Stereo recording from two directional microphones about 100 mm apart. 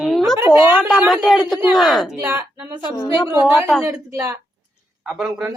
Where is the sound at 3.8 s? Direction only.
35° right (ahead or behind).